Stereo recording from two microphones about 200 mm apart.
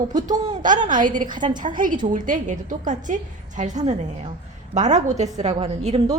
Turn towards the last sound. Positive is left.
turn(degrees=-30)  # may be behind; listen again after turning